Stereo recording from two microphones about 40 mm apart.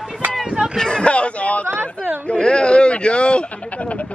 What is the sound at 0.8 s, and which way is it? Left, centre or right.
Speech, left.